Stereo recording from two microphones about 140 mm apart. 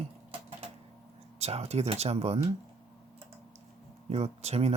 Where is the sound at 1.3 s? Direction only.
50° right (ahead or behind).